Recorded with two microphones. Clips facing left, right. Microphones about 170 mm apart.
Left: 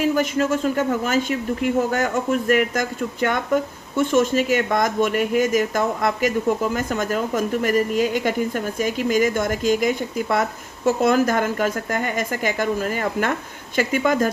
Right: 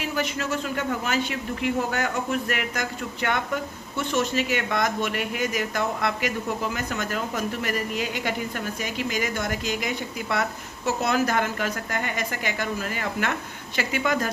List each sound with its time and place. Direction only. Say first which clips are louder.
0.0 s speech: left 8 dB; 45° left (ahead or behind)